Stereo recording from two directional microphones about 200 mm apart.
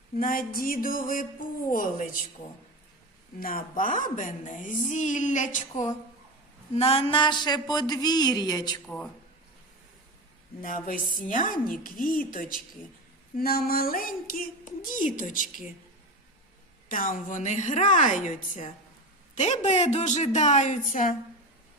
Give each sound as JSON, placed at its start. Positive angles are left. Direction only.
{"t": 0.2, "sound": "speech", "side_deg": 45}
{"t": 3.4, "sound": "speech", "side_deg": 45}
{"t": 6.7, "sound": "a sound", "side_deg": 30}
{"t": 10.6, "sound": "speech", "side_deg": 40}
{"t": 13.3, "sound": "speech", "side_deg": 50}
{"t": 16.9, "sound": "speech", "side_deg": 40}